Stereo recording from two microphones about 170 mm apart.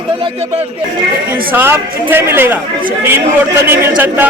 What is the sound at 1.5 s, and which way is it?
A man's voice, 10° right (ahead or behind).